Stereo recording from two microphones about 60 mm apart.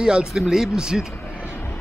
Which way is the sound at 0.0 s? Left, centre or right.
Centre.